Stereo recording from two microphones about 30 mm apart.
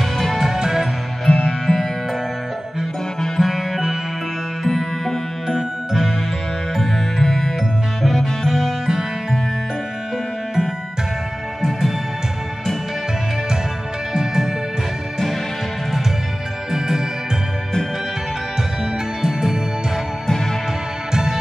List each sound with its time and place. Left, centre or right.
0.6 s music: centre
1.2 s music: centre
3.3 s music: centre
4.6 s music: centre
5.6 s music: centre
7.2 s music: centre
14.1 s music: centre
16.7 s music: centre
19.2 s music: centre
21.1 s music: right